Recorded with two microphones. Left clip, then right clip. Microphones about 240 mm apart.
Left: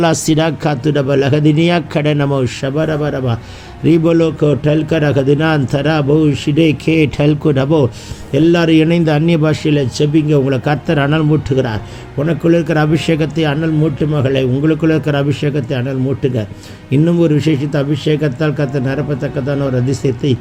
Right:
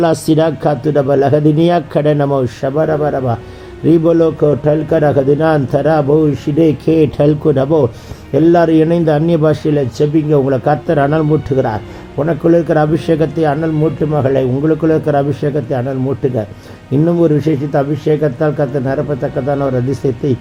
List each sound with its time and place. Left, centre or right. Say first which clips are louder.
0.0 s a man's voice: right 2 dB; left
16.9 s a man's voice: right 1 dB; left